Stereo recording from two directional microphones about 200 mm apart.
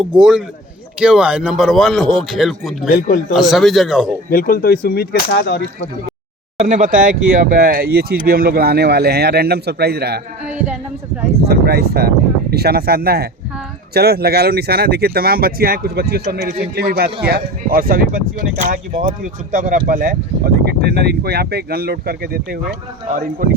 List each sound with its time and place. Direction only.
0.0 s speech: 5° right (ahead or behind)
2.9 s speech: 45° left (ahead or behind)
3.3 s speech: centre (ahead or behind)
4.3 s speech: 50° left (ahead or behind)
6.6 s speech: 40° right (ahead or behind); by 10.2 s 55° right (ahead or behind)
10.4 s speech: 5° right (ahead or behind)
11.4 s speech: 50° right (ahead or behind)
20.7 s speech: 55° right (ahead or behind)